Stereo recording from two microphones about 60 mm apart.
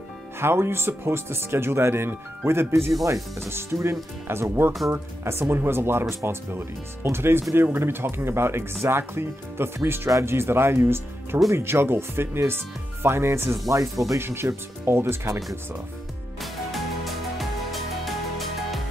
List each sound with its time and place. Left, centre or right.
0.4 s speech: right
13.7 s speech: right
14.2 s speech: right
16.7 s music: centre